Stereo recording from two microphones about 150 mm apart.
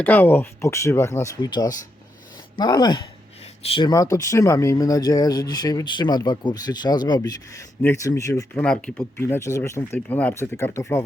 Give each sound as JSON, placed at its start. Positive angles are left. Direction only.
{"t": 0.0, "sound": "speech", "side_deg": 10}
{"t": 8.6, "sound": "speech", "side_deg": 5}
{"t": 9.2, "sound": "speech", "side_deg": 20}